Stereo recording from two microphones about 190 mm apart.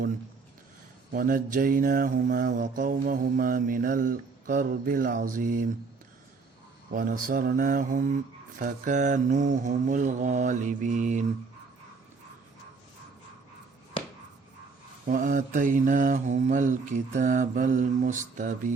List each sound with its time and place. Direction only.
1.1 s mantra: 45° right (ahead or behind)
6.9 s mantra: 50° right (ahead or behind)
15.1 s mantra: 45° right (ahead or behind)